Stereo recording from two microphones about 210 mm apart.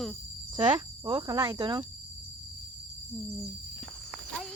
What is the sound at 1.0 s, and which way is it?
Speech, 20° right (ahead or behind).